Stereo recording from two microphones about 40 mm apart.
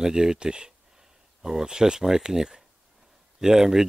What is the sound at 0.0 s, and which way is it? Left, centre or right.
Speech, centre.